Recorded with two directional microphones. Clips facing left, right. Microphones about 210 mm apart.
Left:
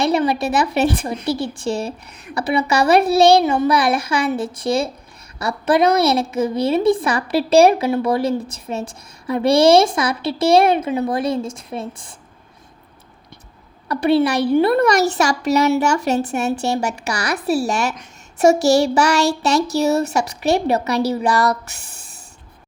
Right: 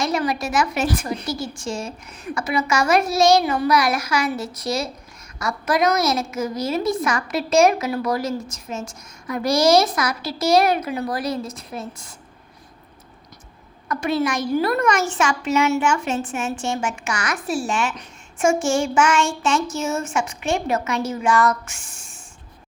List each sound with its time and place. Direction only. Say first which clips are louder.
0.0 s a woman's voice: left 5 dB; 30° left (ahead or behind)
4.3 s a woman's voice: left 5 dB; 50° left (ahead or behind)
4.6 s a woman's voice: left 6 dB; 30° left (ahead or behind)
13.8 s a woman's voice: left 6 dB; 35° left (ahead or behind)